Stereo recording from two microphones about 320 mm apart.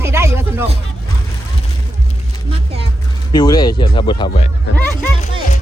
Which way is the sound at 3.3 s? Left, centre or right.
Centre.